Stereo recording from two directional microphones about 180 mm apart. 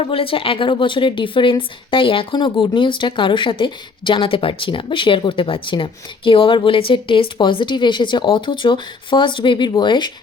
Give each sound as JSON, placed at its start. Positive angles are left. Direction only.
{"t": 0.0, "sound": "speech", "side_deg": 30}